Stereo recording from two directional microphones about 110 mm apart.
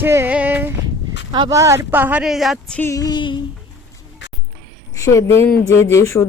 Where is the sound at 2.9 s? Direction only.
35° left (ahead or behind).